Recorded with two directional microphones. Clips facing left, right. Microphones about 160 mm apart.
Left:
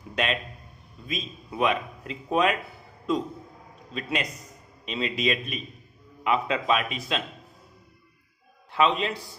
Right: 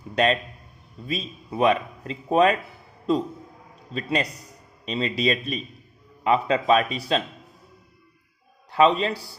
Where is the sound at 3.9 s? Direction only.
35° right (ahead or behind).